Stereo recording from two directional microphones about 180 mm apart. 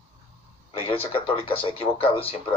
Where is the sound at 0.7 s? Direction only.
30° left (ahead or behind).